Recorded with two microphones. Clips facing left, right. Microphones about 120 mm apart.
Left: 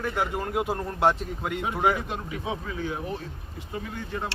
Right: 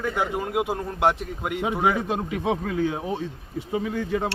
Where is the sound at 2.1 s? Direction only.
80° right.